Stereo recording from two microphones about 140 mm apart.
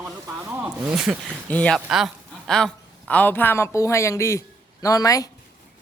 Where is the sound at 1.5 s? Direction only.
10° left (ahead or behind).